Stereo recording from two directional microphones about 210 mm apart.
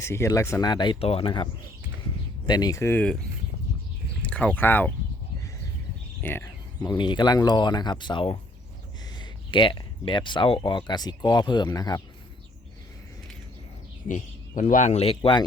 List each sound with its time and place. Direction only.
0.0 s speech: 15° left (ahead or behind)
2.5 s speech: 20° left (ahead or behind)
4.2 s speech: 5° left (ahead or behind)
6.2 s speech: 10° left (ahead or behind)
6.7 s speech: 20° left (ahead or behind)
14.1 s a man's voice: 35° left (ahead or behind)